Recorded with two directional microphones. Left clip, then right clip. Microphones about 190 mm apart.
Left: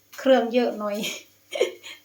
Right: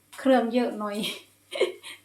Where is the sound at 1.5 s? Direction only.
10° left (ahead or behind).